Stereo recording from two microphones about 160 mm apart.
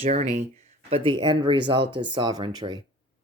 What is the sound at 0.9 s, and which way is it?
Speech, 30° right (ahead or behind).